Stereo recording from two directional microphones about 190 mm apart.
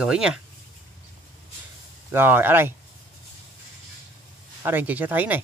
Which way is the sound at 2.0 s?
10° right (ahead or behind).